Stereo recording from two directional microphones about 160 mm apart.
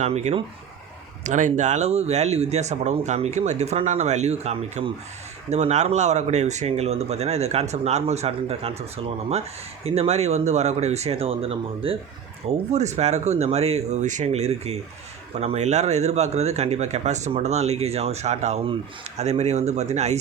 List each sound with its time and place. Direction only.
0.0 s speech: 45° right (ahead or behind)